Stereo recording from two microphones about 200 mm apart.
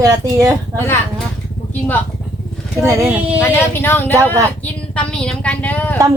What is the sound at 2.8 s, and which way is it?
Speech, 15° right (ahead or behind).